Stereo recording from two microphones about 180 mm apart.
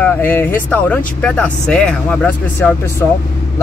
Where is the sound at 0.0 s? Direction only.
10° left (ahead or behind).